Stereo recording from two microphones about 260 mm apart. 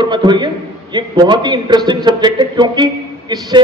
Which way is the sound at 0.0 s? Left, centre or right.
Centre.